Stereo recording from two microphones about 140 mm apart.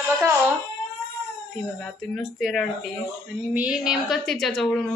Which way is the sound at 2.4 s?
Centre (ahead or behind).